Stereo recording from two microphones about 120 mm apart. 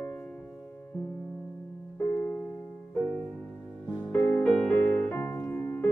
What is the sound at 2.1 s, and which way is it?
Music, 25° left (ahead or behind).